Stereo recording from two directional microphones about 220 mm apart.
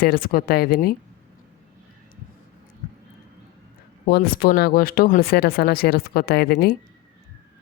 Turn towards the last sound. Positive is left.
turn(degrees=45)  # may be behind; listen again after turning